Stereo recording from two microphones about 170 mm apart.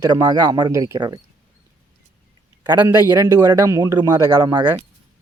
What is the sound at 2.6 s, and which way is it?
A man's voice, 10° right (ahead or behind).